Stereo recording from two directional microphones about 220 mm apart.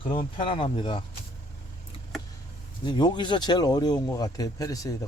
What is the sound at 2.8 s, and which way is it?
Speech, 20° left (ahead or behind).